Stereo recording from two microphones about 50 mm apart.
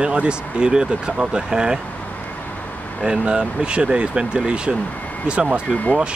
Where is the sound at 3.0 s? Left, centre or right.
Centre.